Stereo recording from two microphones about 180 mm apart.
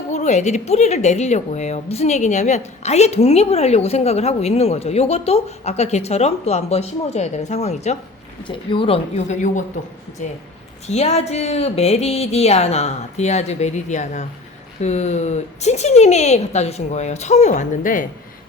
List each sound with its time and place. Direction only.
0.1 s a woman's voice: 40° left (ahead or behind)
10.8 s a woman's voice: 35° left (ahead or behind)